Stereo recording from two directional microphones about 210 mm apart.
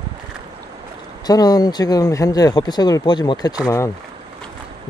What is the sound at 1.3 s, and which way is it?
Speech, 15° left (ahead or behind).